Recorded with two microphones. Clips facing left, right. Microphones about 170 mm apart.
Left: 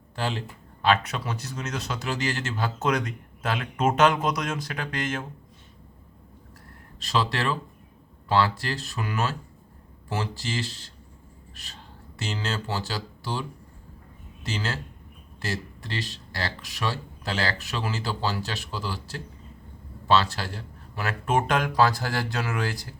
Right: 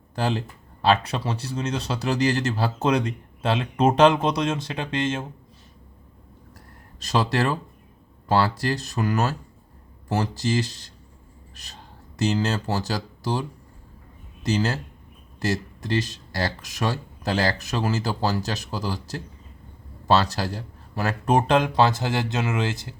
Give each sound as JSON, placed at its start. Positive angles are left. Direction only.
{"t": 0.2, "sound": "speech", "side_deg": -35}
{"t": 7.0, "sound": "speech", "side_deg": -40}
{"t": 14.4, "sound": "speech", "side_deg": -40}